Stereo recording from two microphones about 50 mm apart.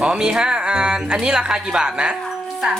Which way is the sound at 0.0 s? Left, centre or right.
Centre.